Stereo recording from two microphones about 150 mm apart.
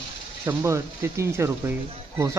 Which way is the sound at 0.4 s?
20° right (ahead or behind).